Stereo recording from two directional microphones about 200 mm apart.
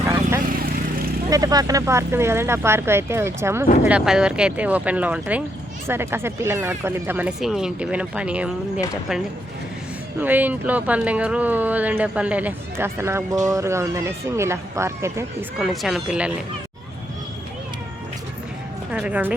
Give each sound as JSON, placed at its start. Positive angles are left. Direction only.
{"t": 0.4, "sound": "vehicle", "side_deg": -45}
{"t": 1.3, "sound": "speech", "side_deg": -20}
{"t": 10.2, "sound": "speech", "side_deg": -10}
{"t": 15.5, "sound": "speech", "side_deg": 0}
{"t": 18.9, "sound": "speech", "side_deg": -5}